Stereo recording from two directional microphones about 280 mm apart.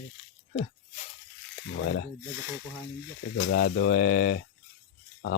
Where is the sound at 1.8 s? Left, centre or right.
Left.